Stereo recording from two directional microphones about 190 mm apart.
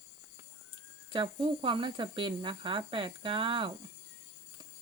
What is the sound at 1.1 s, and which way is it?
Speech, 25° right (ahead or behind).